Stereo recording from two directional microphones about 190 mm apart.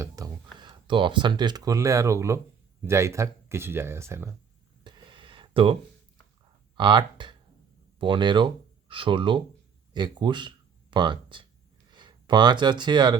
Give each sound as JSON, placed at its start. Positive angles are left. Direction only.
{"t": 0.0, "sound": "speech", "side_deg": -20}
{"t": 4.8, "sound": "a sound", "side_deg": -25}
{"t": 6.7, "sound": "speech", "side_deg": -25}